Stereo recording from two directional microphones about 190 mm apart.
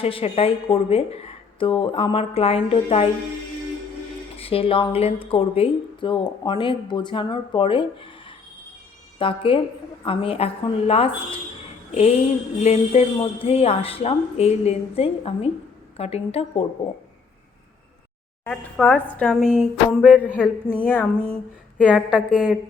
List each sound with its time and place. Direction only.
0.0 s speech: 30° left (ahead or behind)
4.4 s a woman's voice: 30° left (ahead or behind)
9.1 s a woman's voice: 25° left (ahead or behind)
18.4 s a woman's voice: 5° left (ahead or behind)
19.9 s music: 5° right (ahead or behind)
20.3 s speech: 5° right (ahead or behind)
20.8 s a woman's voice: 10° left (ahead or behind)
21.3 s speech: 5° right (ahead or behind)